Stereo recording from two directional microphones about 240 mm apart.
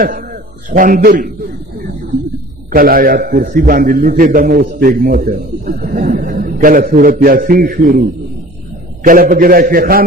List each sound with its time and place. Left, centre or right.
0.7 s a man's voice: right
2.7 s a man's voice: right
9.0 s a man's voice: right